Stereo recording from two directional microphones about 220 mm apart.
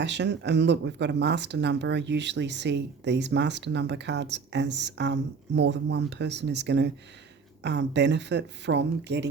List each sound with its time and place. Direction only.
0.0 s speech: 50° right (ahead or behind)